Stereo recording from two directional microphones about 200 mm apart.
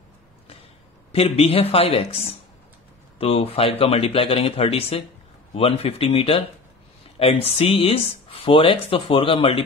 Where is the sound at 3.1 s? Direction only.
30° left (ahead or behind).